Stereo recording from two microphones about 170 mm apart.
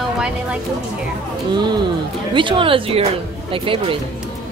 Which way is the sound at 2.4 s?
30° right (ahead or behind).